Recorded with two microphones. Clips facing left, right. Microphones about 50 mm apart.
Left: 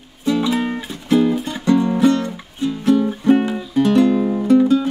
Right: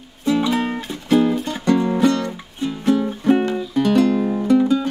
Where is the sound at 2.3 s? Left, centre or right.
Centre.